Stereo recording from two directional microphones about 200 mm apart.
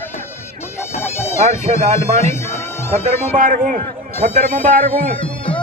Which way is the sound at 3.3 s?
40° right (ahead or behind).